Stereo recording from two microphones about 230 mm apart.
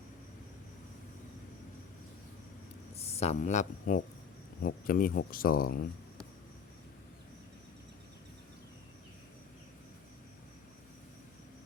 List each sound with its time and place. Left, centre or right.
2.9 s speech: left